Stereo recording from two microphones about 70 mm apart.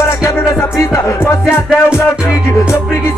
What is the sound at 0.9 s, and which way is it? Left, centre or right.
Music, left.